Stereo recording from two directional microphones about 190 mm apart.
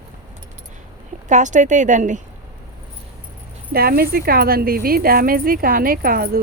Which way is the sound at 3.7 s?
55° right (ahead or behind).